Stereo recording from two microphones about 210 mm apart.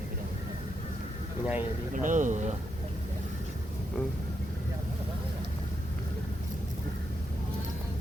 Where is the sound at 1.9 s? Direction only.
40° right (ahead or behind).